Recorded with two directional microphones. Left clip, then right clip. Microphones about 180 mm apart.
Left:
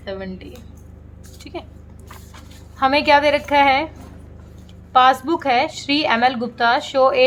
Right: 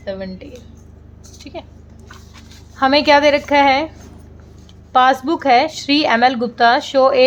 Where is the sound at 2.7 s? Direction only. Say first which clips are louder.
Right 2 dB; 25° right (ahead or behind).